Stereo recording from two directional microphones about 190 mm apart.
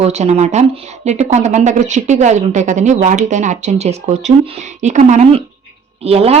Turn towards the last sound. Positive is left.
turn(degrees=-30)  # may be behind; listen again after turning